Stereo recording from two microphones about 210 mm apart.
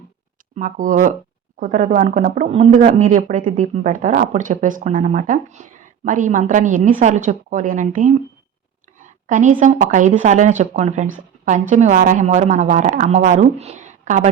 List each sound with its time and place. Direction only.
0.5 s speech: 40° right (ahead or behind)
9.2 s speech: 40° right (ahead or behind)